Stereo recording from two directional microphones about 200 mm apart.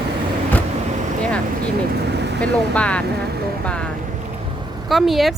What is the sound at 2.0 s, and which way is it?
Vehicle, 55° right (ahead or behind).